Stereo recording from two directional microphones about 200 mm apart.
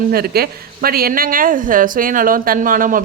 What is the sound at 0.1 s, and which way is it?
A woman's voice, 50° right (ahead or behind).